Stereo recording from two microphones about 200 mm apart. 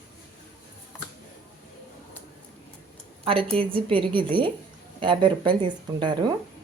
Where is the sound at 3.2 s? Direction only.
25° right (ahead or behind).